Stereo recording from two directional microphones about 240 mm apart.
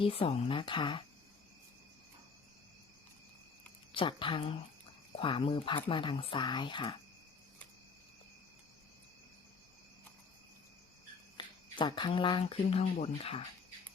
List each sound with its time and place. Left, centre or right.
0.0 s speech: left
3.9 s speech: left
11.3 s speech: centre